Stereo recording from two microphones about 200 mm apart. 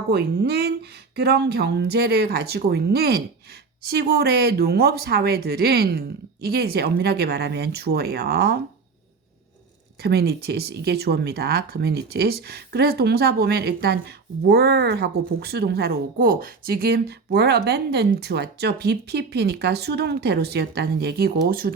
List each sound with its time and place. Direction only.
0.1 s speech: 55° right (ahead or behind)
10.0 s speech: 50° right (ahead or behind)